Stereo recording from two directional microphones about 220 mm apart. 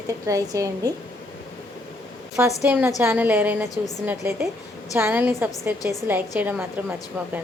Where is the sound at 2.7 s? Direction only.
5° right (ahead or behind).